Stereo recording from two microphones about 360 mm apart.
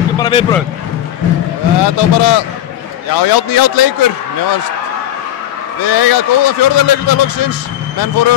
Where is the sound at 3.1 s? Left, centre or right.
Left.